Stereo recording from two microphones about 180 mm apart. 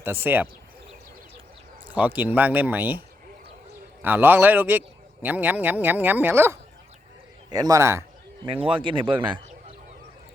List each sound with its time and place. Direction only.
0.0 s speech: 10° right (ahead or behind)
1.9 s speech: 10° right (ahead or behind)
4.0 s speech: 10° right (ahead or behind)
8.7 s speech: 30° right (ahead or behind)